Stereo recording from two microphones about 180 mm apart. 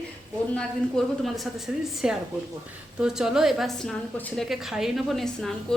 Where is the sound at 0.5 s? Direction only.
Centre (ahead or behind).